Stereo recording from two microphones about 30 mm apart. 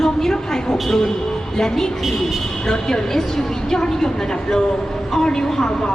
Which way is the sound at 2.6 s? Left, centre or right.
Centre.